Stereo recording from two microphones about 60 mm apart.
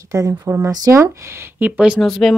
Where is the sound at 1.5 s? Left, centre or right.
Right.